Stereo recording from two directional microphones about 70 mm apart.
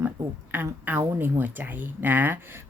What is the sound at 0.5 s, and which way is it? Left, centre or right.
Speech, right.